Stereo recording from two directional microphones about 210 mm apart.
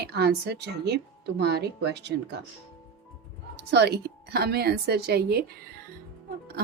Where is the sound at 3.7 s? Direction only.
50° right (ahead or behind).